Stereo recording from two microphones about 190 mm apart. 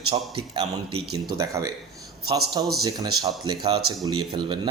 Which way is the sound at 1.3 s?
15° right (ahead or behind).